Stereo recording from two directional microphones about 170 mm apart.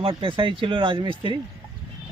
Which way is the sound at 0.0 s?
30° right (ahead or behind).